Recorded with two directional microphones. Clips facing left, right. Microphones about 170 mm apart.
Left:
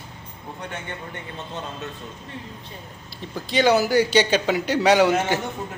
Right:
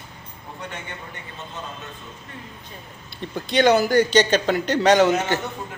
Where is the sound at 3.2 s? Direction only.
5° left (ahead or behind).